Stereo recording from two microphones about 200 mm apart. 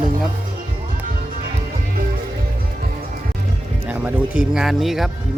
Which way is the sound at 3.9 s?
5° right (ahead or behind).